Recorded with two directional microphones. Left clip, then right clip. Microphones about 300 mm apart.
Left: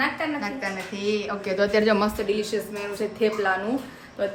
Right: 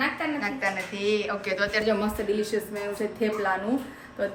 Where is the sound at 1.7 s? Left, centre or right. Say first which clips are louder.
Left 5 dB; left.